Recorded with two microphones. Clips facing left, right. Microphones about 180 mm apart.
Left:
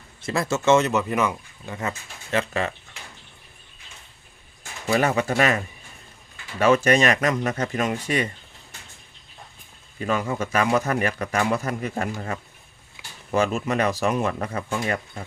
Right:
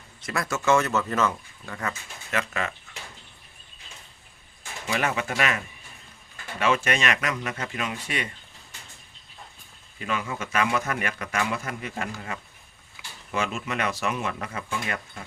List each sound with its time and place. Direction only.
0.2 s speech: 25° left (ahead or behind)
4.9 s speech: 40° left (ahead or behind)
10.0 s speech: 40° left (ahead or behind)
13.3 s speech: 40° left (ahead or behind)